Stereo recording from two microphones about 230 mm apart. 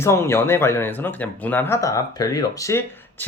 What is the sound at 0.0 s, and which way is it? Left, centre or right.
Speech, centre.